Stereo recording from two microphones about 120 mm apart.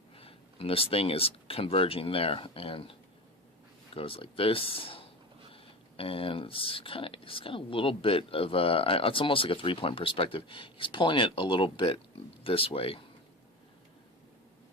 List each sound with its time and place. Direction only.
0.2 s speech: 50° left (ahead or behind)
3.9 s speech: 50° left (ahead or behind)